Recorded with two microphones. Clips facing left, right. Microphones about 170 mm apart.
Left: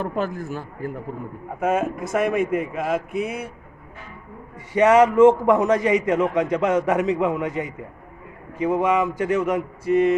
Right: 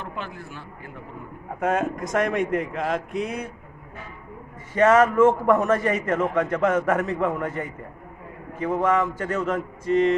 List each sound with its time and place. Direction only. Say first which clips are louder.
0.0 s speech: left 9 dB; 40° left (ahead or behind)
1.5 s speech: left 2 dB; 5° left (ahead or behind)
4.7 s a man's voice: left 2 dB; 15° left (ahead or behind)